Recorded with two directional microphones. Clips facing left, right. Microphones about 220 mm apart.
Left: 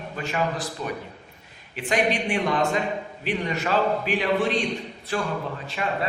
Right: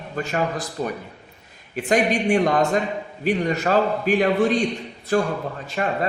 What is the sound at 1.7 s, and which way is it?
A man's voice, 45° right (ahead or behind).